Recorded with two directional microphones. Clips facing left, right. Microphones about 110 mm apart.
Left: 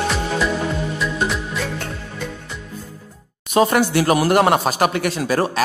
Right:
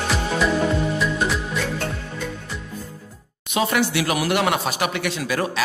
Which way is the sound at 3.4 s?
40° left (ahead or behind).